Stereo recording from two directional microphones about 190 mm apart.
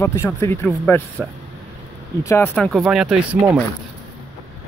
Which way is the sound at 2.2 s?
10° left (ahead or behind).